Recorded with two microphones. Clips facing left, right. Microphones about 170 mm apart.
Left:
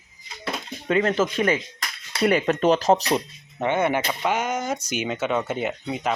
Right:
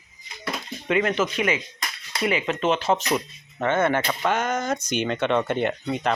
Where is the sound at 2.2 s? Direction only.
45° left (ahead or behind).